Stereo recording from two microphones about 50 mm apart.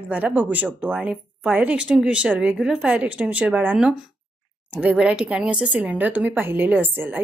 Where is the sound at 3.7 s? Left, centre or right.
Centre.